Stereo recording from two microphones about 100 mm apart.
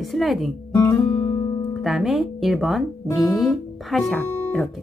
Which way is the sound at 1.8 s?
Centre (ahead or behind).